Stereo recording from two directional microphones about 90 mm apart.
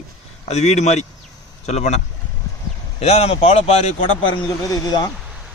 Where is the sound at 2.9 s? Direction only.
90° left.